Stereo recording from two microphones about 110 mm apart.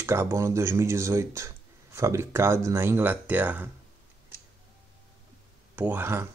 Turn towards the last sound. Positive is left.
turn(degrees=-20)  # may be behind; listen again after turning